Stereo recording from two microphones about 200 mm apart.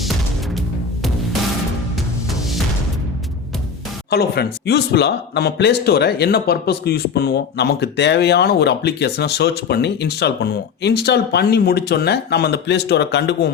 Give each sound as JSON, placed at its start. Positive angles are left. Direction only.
{"t": 4.1, "sound": "speech", "side_deg": 55}